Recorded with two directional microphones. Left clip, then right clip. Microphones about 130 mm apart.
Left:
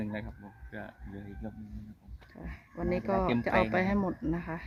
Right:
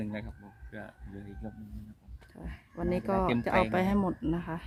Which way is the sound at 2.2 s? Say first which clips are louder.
Left 1 dB; 20° right (ahead or behind).